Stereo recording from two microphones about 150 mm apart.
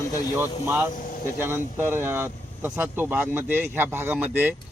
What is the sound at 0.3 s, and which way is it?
Speech, 15° right (ahead or behind).